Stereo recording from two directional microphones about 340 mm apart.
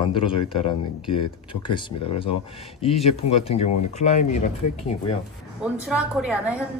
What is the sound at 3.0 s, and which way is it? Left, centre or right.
Speech, centre.